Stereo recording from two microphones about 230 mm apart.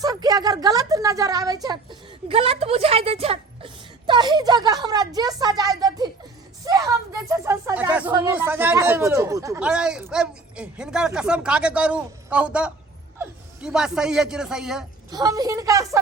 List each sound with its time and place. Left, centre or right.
0.0 s a woman's voice: centre
6.7 s a sound: centre
8.1 s a man's voice: centre
15.1 s a woman's voice: centre